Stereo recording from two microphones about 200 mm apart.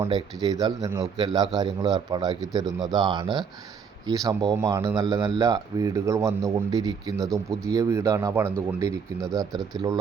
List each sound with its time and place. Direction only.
0.0 s a man's voice: 20° right (ahead or behind)